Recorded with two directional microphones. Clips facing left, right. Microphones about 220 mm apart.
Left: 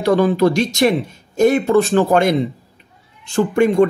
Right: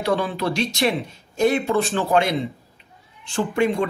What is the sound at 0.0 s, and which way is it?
Speech, 45° left (ahead or behind).